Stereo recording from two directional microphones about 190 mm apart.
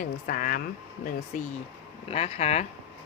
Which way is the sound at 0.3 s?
45° left (ahead or behind).